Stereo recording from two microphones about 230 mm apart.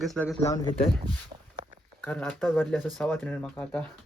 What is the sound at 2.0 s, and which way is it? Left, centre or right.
Speech, centre.